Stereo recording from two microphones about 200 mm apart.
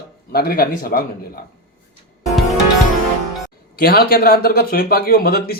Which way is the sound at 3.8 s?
50° left (ahead or behind).